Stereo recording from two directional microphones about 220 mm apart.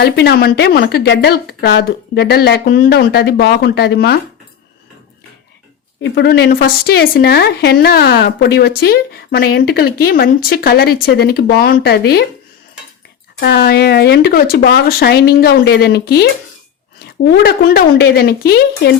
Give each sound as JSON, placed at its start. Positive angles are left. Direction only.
{"t": 0.0, "sound": "a woman's voice", "side_deg": 45}
{"t": 6.0, "sound": "a woman's voice", "side_deg": 50}
{"t": 13.4, "sound": "a woman's voice", "side_deg": 45}